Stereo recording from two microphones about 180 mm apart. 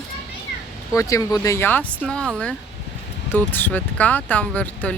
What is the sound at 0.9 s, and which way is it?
Speech, 20° left (ahead or behind).